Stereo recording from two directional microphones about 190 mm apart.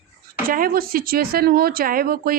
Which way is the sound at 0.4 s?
50° right (ahead or behind).